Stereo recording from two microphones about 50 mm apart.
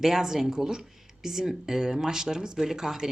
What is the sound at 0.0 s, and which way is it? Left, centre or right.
Speech, centre.